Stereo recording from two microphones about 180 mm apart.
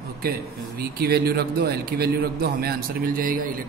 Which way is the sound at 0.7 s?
60° right (ahead or behind).